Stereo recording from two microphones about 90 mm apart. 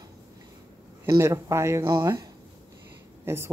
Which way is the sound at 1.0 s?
35° right (ahead or behind).